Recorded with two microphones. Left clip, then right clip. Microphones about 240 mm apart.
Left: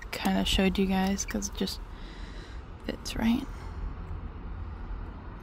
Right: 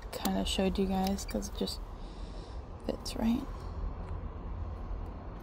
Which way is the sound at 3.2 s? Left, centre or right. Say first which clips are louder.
Left 5 dB; left.